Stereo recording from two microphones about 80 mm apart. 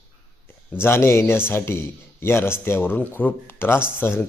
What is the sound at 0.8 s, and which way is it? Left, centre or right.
A man's voice, left.